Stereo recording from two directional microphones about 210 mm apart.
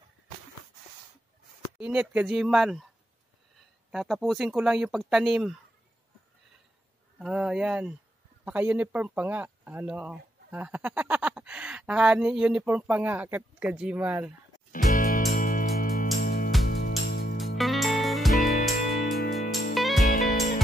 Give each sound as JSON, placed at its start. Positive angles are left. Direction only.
{"t": 1.8, "sound": "speech", "side_deg": -5}
{"t": 3.9, "sound": "speech", "side_deg": 0}
{"t": 7.2, "sound": "speech", "side_deg": -5}
{"t": 14.7, "sound": "music", "side_deg": 40}
{"t": 17.6, "sound": "music", "side_deg": 0}
{"t": 19.7, "sound": "music", "side_deg": 0}
{"t": 20.0, "sound": "music", "side_deg": 40}